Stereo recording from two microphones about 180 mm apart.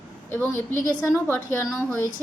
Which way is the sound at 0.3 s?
10° left (ahead or behind).